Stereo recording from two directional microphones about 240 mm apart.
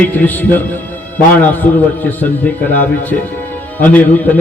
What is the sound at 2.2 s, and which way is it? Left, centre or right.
A man's voice, centre.